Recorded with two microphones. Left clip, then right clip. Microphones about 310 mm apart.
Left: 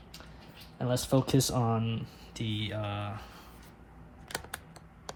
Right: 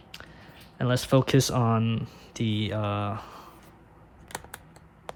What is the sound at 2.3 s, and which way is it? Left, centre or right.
Speech, centre.